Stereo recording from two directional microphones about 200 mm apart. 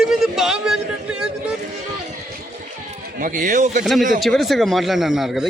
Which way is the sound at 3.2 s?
40° right (ahead or behind).